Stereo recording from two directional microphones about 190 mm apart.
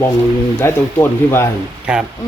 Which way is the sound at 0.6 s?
10° left (ahead or behind).